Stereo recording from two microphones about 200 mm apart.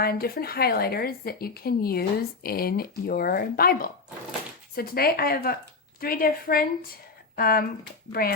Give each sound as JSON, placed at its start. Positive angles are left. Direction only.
{"t": 0.0, "sound": "a woman's voice", "side_deg": 50}